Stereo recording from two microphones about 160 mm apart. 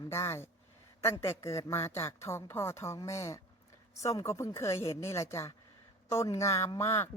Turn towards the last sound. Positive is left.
turn(degrees=15)  # may be behind; listen again after turning